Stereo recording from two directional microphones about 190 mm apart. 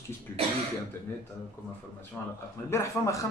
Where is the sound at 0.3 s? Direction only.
15° left (ahead or behind).